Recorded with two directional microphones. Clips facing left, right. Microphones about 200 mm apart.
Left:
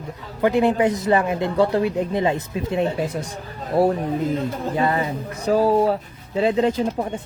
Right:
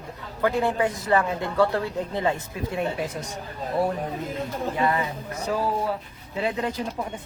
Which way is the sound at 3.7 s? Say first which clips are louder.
Left 7 dB; 30° left (ahead or behind).